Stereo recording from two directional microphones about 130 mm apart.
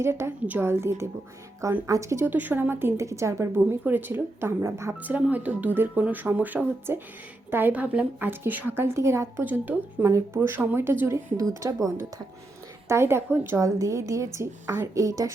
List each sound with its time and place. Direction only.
0.0 s a woman's voice: 20° right (ahead or behind)